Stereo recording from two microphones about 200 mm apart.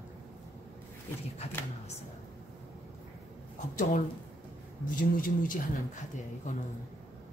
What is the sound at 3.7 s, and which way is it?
Speech, 40° left (ahead or behind).